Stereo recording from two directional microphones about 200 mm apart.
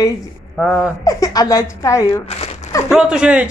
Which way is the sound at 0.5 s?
Centre (ahead or behind).